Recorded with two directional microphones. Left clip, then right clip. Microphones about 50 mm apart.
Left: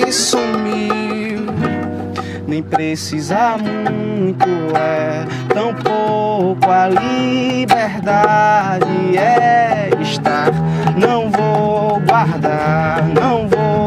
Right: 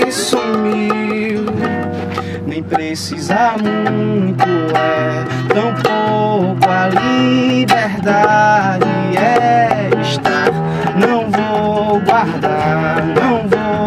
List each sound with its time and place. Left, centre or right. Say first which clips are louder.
5.9 s music: even; right
7.0 s music: right 2 dB; centre
11.5 s music: even; centre
12.2 s music: right 1 dB; centre